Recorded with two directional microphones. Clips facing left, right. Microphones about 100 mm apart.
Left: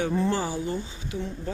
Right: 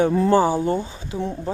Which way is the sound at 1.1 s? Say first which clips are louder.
Right 6 dB; 25° right (ahead or behind).